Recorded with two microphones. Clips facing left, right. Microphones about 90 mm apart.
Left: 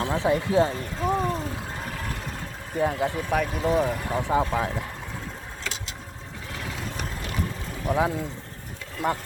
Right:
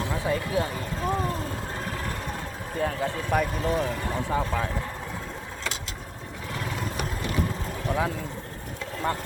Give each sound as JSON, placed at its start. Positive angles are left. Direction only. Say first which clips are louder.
{"t": 0.0, "sound": "speech", "louder": "left 4 dB", "side_deg": 25}
{"t": 1.0, "sound": "speech", "louder": "left 3 dB", "side_deg": 0}
{"t": 2.7, "sound": "speech", "louder": "left 3 dB", "side_deg": 15}
{"t": 3.2, "sound": "speech", "louder": "right 1 dB", "side_deg": 0}
{"t": 7.9, "sound": "speech", "louder": "left 4 dB", "side_deg": 20}